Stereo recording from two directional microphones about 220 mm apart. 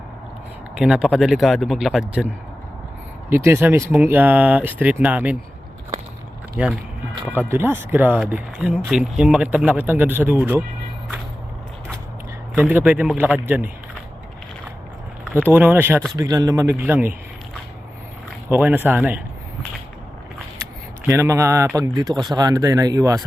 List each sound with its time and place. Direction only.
0.8 s speech: centre (ahead or behind)
6.6 s speech: 5° right (ahead or behind)
12.5 s speech: 5° right (ahead or behind)
15.4 s speech: 10° right (ahead or behind)
18.3 s speech: 10° right (ahead or behind)
21.1 s speech: 15° right (ahead or behind)